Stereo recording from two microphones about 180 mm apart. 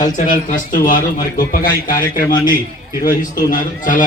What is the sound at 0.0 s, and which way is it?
A man's voice, 45° left (ahead or behind).